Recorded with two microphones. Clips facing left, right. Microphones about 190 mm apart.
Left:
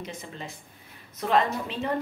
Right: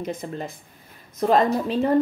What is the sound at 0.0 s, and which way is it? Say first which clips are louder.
A woman's voice: right 8 dB; 50° right (ahead or behind).